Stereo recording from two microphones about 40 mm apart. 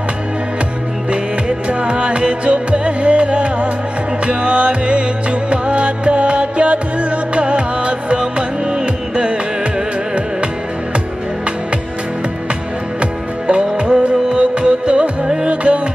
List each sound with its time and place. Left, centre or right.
1.7 s music: right
13.0 s music: right